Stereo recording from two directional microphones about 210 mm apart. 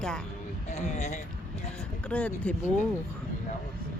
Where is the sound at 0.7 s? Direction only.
35° left (ahead or behind).